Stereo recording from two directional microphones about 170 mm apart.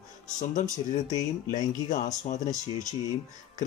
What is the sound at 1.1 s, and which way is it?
Speech, 45° left (ahead or behind).